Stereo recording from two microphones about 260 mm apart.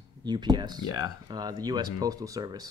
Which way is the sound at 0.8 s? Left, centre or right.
Left.